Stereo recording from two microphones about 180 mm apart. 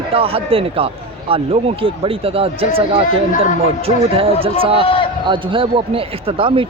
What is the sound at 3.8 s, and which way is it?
Speech, 30° right (ahead or behind).